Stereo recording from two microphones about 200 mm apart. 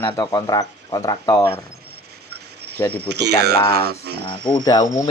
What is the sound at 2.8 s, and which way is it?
Speech, 15° left (ahead or behind).